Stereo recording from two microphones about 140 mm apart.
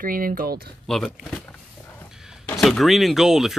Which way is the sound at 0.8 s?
Centre (ahead or behind).